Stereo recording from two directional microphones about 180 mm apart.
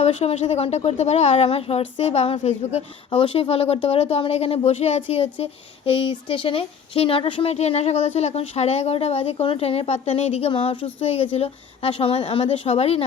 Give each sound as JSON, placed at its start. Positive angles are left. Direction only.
{"t": 0.0, "sound": "speech", "side_deg": 35}